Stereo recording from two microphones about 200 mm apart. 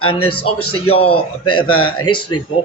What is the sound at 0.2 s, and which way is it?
Speech, 90° left.